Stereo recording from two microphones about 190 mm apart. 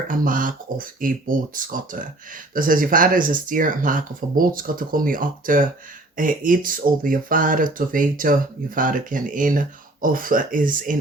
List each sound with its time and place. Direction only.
0.1 s speech: 45° right (ahead or behind)